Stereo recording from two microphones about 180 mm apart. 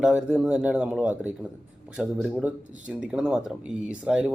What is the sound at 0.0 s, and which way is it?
Speech, 5° right (ahead or behind).